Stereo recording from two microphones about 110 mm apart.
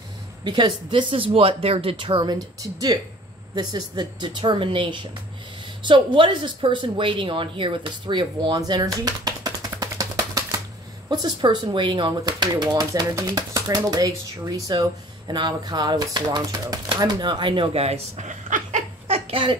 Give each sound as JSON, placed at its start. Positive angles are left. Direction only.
{"t": 0.4, "sound": "speech", "side_deg": -45}
{"t": 2.3, "sound": "speech", "side_deg": -35}
{"t": 17.0, "sound": "a sound", "side_deg": -40}
{"t": 19.3, "sound": "speech", "side_deg": -50}